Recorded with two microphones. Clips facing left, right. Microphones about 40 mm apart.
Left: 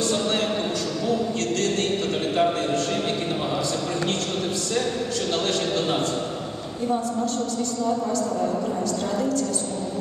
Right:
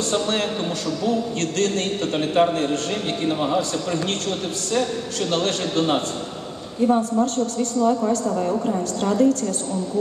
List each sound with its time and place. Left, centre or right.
9.0 s a woman's voice: right